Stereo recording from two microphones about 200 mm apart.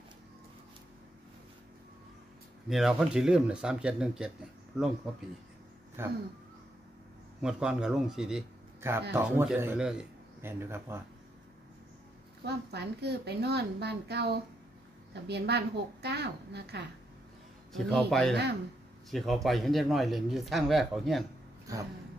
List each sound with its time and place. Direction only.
2.7 s a man's voice: 5° right (ahead or behind)
6.0 s a man's voice: 10° right (ahead or behind)
7.4 s a man's voice: 5° right (ahead or behind)
12.4 s a woman's voice: 55° right (ahead or behind)
17.7 s a man's voice: centre (ahead or behind)
18.3 s a woman's voice: 55° right (ahead or behind)
19.0 s a man's voice: centre (ahead or behind)